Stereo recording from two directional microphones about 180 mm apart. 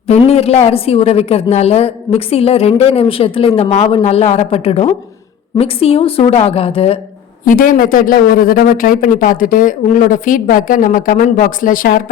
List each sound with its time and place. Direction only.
0.1 s a woman's voice: 35° left (ahead or behind)
7.4 s speech: 50° left (ahead or behind)